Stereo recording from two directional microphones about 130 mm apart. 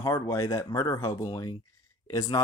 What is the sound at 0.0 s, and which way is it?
Speech, 25° left (ahead or behind).